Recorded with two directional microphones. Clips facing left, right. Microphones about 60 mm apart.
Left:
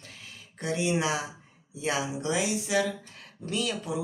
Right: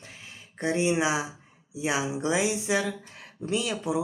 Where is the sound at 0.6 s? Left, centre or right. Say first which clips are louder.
Right 3 dB; right.